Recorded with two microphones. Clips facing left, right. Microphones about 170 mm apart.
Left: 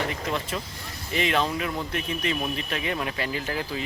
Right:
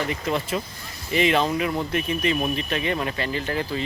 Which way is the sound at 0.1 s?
5° right (ahead or behind).